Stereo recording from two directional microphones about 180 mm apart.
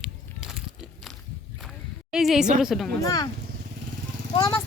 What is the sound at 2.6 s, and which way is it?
Speech, centre (ahead or behind).